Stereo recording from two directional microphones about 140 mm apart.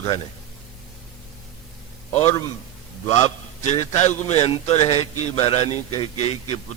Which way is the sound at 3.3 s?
50° left (ahead or behind).